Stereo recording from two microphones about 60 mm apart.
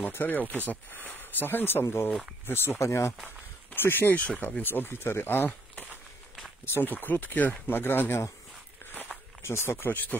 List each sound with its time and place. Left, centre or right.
0.1 s speech: left
2.8 s speech: left
3.3 s speech: left
6.6 s speech: left
9.4 s speech: left